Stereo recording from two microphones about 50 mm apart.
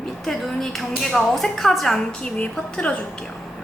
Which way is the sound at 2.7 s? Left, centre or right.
Left.